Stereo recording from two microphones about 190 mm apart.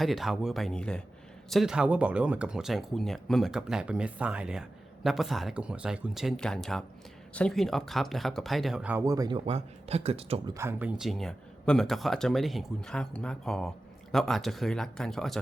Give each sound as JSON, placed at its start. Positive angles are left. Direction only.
{"t": 0.0, "sound": "speech", "side_deg": 0}
{"t": 9.5, "sound": "speech", "side_deg": -35}
{"t": 10.5, "sound": "speech", "side_deg": -15}